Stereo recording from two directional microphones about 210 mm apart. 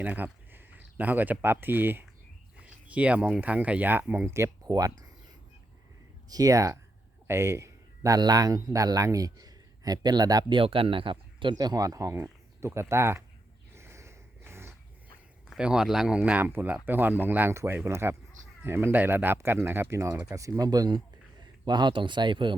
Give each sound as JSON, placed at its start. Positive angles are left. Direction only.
{"t": 0.0, "sound": "speech", "side_deg": -10}
{"t": 6.2, "sound": "a man's voice", "side_deg": -15}
{"t": 13.7, "sound": "a sound", "side_deg": -15}
{"t": 15.4, "sound": "a man's voice", "side_deg": -5}